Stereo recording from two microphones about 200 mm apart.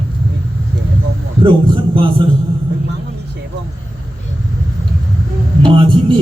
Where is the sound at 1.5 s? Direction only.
25° right (ahead or behind).